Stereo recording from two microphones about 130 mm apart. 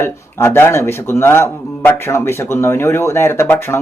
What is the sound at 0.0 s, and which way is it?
A man's voice, 20° left (ahead or behind).